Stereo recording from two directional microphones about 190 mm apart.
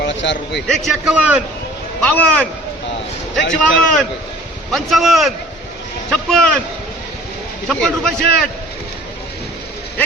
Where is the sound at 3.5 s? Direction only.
5° left (ahead or behind).